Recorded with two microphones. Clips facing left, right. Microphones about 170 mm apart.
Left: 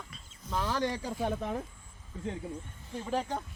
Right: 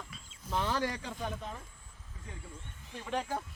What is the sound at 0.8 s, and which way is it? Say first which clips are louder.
Speech: left 3 dB; 25° left (ahead or behind).